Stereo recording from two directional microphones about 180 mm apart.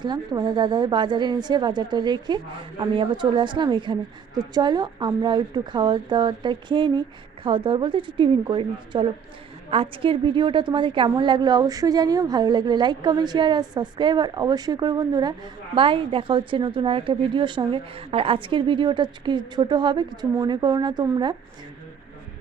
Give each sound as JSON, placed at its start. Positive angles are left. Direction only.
{"t": 0.0, "sound": "a woman's voice", "side_deg": -25}